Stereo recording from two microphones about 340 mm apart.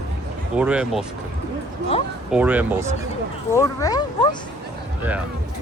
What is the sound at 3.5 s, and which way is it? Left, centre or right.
Speech, centre.